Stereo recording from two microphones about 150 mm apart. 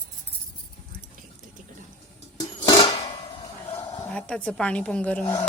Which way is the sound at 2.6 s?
25° left (ahead or behind).